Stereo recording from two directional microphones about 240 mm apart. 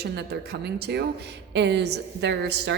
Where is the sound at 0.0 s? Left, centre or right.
Right.